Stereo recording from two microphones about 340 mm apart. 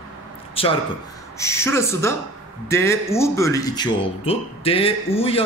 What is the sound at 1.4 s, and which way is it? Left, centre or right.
Speech, centre.